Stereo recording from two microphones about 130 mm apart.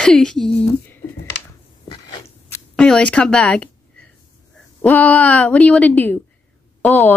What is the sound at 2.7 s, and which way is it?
A woman's voice, 5° left (ahead or behind).